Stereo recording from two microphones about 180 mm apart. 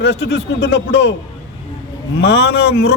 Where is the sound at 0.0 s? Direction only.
70° left (ahead or behind).